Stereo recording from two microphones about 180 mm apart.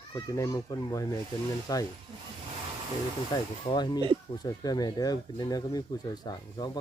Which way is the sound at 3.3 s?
20° left (ahead or behind).